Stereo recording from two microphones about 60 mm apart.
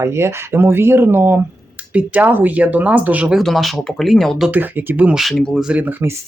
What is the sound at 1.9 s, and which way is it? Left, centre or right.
Speech, right.